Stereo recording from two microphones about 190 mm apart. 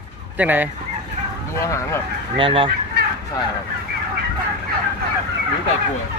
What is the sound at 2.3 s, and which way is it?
Fowl, 30° right (ahead or behind).